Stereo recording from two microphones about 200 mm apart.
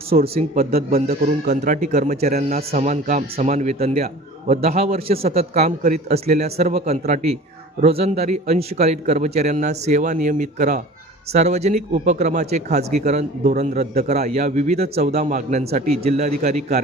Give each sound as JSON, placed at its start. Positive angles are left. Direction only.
{"t": 0.3, "sound": "speech", "side_deg": -35}
{"t": 0.7, "sound": "a man's voice", "side_deg": -50}
{"t": 1.1, "sound": "speech", "side_deg": -35}